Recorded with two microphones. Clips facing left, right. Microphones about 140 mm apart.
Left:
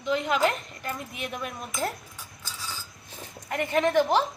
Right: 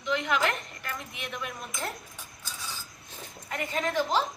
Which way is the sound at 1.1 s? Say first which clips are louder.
Left 3 dB; 45° left (ahead or behind).